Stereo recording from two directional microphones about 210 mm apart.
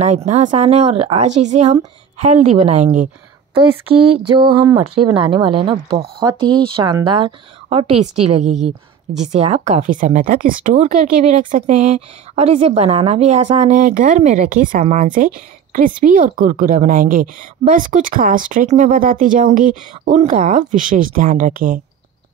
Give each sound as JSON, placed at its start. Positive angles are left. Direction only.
{"t": 0.0, "sound": "speech", "side_deg": -30}
{"t": 4.8, "sound": "speech", "side_deg": -90}
{"t": 5.1, "sound": "speech", "side_deg": -25}